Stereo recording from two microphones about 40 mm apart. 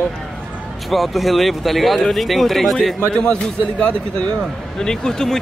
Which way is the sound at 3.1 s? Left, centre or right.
Left.